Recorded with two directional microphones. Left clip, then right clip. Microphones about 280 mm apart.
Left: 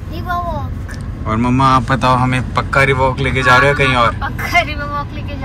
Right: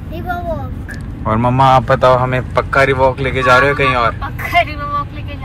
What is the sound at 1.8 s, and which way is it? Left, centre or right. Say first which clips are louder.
Speech: right 3 dB; centre.